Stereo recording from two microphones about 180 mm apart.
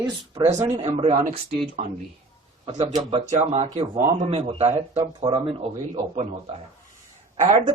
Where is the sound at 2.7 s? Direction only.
25° right (ahead or behind).